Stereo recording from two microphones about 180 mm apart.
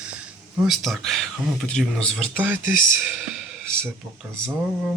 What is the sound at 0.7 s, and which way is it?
Speech, centre (ahead or behind).